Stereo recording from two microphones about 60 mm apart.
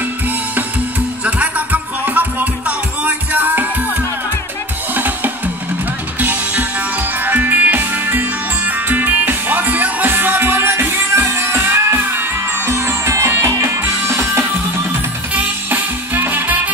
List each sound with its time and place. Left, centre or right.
1.2 s music: right
4.9 s drum: right
6.1 s music: right
15.3 s music: right